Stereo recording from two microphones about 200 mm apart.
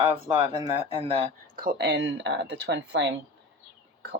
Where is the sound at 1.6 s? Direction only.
50° right (ahead or behind).